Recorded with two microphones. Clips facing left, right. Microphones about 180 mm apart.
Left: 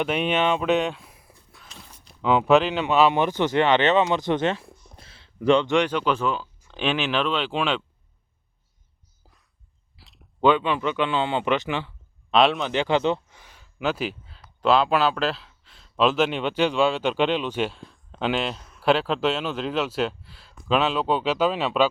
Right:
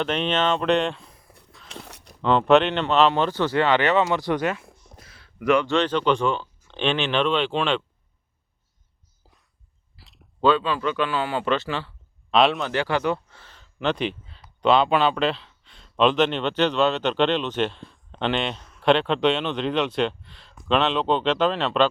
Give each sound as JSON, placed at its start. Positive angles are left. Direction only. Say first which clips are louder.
{"t": 0.0, "sound": "speech", "louder": "left 1 dB", "side_deg": 10}
{"t": 1.7, "sound": "a sound", "louder": "right 9 dB", "side_deg": -75}
{"t": 2.2, "sound": "speech", "louder": "right 1 dB", "side_deg": 5}
{"t": 5.7, "sound": "a man's voice", "louder": "right 1 dB", "side_deg": 10}
{"t": 9.9, "sound": "a sound", "louder": "right 1 dB", "side_deg": 0}
{"t": 10.4, "sound": "speech", "louder": "even", "side_deg": 20}
{"t": 12.3, "sound": "a man's voice", "louder": "even", "side_deg": 0}
{"t": 12.6, "sound": "a man's voice", "louder": "left 2 dB", "side_deg": 20}